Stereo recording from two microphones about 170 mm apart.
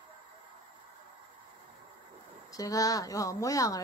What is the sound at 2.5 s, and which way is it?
Speech, 20° left (ahead or behind).